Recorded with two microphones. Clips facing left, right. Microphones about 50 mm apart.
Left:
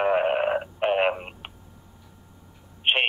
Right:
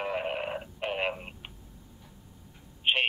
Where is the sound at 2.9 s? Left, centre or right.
Left.